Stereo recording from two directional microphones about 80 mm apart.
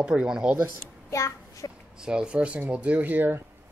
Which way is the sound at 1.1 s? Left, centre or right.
Left.